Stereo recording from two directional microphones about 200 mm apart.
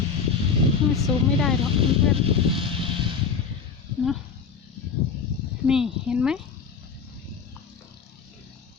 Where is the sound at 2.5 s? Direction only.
25° right (ahead or behind).